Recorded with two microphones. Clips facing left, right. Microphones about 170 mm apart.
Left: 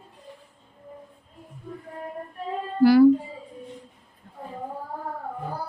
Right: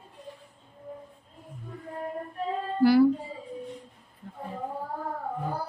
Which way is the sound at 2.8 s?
90° left.